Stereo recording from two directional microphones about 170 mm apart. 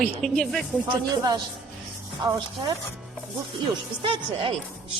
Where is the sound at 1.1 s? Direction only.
25° right (ahead or behind).